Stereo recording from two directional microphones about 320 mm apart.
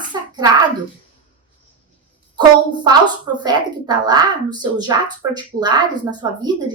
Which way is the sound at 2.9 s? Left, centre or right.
Centre.